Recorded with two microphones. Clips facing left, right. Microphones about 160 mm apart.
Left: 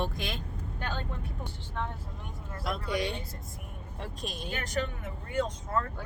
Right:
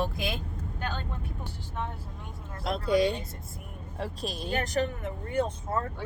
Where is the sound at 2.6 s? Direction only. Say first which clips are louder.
Right 7 dB; 25° right (ahead or behind).